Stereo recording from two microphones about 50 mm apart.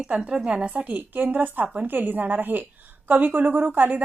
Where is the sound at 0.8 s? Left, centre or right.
Right.